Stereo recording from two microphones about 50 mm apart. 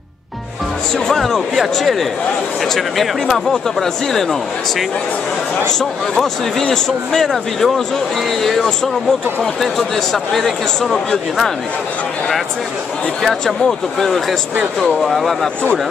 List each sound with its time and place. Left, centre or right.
0.9 s speech: centre
6.1 s speech: centre
7.1 s speech: centre
13.2 s speech: centre